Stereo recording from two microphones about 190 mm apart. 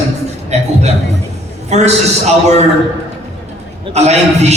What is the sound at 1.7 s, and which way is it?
Speech, 35° right (ahead or behind).